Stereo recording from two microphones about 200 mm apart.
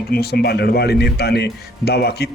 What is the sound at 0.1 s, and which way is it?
Speech, 50° left (ahead or behind).